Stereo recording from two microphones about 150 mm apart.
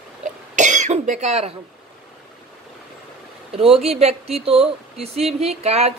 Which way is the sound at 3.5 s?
40° right (ahead or behind).